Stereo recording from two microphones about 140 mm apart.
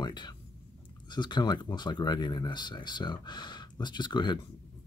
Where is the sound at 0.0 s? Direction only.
30° left (ahead or behind).